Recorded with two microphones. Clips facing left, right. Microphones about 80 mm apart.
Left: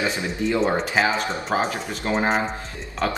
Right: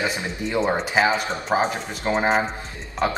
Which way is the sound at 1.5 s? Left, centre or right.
Centre.